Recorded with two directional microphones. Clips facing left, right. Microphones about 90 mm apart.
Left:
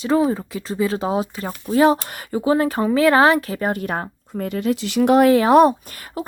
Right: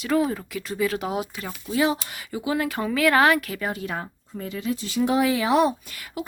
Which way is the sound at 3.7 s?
50° left (ahead or behind).